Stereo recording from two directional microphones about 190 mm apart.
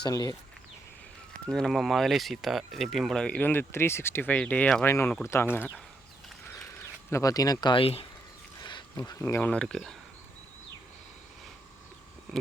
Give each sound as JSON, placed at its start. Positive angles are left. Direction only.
{"t": 0.0, "sound": "speech", "side_deg": 20}
{"t": 1.5, "sound": "speech", "side_deg": 0}
{"t": 7.1, "sound": "speech", "side_deg": 15}
{"t": 12.3, "sound": "a sound", "side_deg": 0}